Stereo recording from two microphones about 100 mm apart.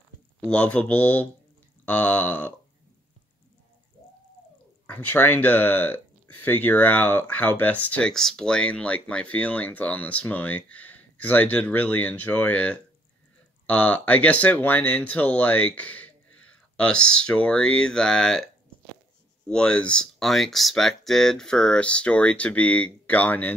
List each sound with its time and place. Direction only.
0.4 s speech: 10° left (ahead or behind)
4.8 s speech: 20° left (ahead or behind)
19.4 s speech: 10° left (ahead or behind)